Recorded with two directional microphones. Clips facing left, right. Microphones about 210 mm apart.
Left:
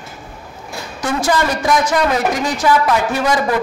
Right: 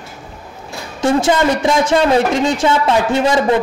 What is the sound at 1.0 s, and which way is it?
A woman's voice, 25° right (ahead or behind).